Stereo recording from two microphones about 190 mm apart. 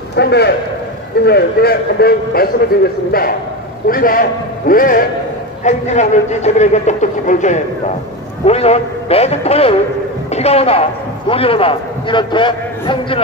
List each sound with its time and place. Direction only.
0.1 s a man's voice: 60° left (ahead or behind)
5.6 s a man's voice: 40° left (ahead or behind)